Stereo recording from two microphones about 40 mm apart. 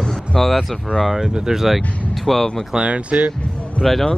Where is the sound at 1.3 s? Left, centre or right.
Centre.